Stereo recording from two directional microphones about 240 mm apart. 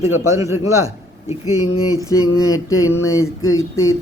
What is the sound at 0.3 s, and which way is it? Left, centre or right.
Speech, centre.